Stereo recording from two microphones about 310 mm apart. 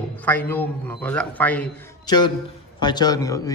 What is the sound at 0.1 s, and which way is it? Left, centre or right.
A man's voice, centre.